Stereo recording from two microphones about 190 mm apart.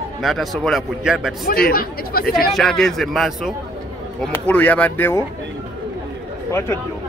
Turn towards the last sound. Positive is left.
turn(degrees=15)  # may be behind; listen again after turning